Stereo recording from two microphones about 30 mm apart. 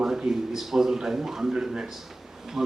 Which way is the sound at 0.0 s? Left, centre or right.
Centre.